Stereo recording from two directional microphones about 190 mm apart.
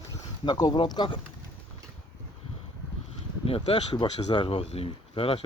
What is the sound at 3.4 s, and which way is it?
Speech, 30° left (ahead or behind).